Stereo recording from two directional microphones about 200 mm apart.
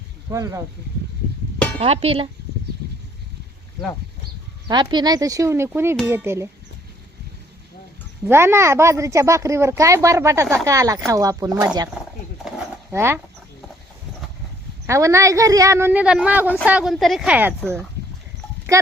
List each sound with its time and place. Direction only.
0.3 s a woman's voice: 15° right (ahead or behind)
1.8 s speech: 30° right (ahead or behind)
4.7 s a woman's voice: 20° right (ahead or behind)
8.2 s a woman's voice: 10° right (ahead or behind)
12.5 s a sound: 10° right (ahead or behind)
14.8 s a woman's voice: 15° right (ahead or behind)